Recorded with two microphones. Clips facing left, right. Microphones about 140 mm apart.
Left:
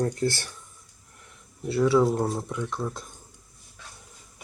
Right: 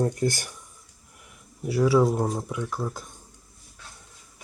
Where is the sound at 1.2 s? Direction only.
5° right (ahead or behind).